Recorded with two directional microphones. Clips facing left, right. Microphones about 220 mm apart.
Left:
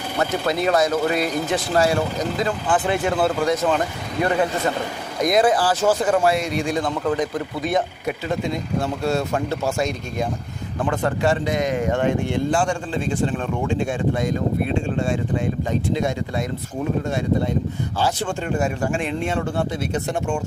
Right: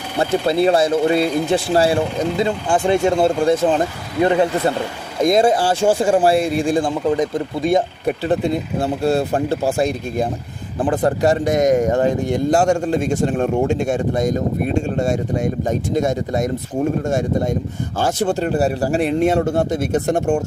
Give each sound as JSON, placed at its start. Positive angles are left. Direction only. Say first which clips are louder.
{"t": 0.4, "sound": "speech", "louder": "right 4 dB", "side_deg": -30}